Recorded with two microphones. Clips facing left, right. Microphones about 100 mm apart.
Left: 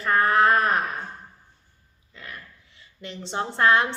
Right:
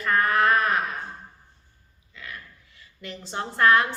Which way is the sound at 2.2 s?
35° left (ahead or behind).